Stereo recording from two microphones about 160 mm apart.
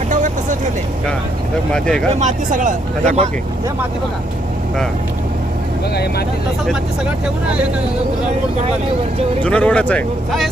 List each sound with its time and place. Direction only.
1.7 s speech: 5° left (ahead or behind)
2.1 s speech: 50° right (ahead or behind)
5.9 s speech: 90° left
9.4 s speech: 10° left (ahead or behind)